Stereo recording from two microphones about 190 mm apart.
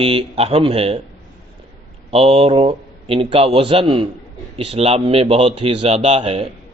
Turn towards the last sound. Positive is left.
turn(degrees=-35)  # may be behind; listen again after turning